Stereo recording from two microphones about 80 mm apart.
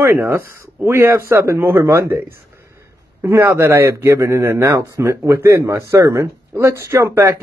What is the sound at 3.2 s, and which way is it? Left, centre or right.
Speech, right.